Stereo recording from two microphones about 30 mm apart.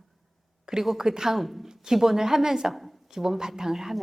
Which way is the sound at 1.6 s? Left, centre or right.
Centre.